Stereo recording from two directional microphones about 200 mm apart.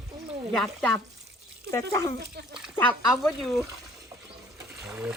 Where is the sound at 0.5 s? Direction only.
5° left (ahead or behind).